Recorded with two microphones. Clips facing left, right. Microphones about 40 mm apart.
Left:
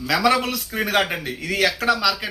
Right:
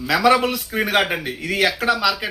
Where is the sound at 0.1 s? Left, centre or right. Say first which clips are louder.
Right 3 dB; centre.